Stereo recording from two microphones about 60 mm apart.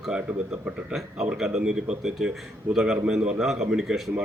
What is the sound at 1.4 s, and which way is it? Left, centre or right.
Speech, centre.